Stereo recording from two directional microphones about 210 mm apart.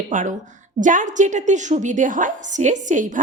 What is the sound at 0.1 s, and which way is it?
A woman's voice, 40° right (ahead or behind).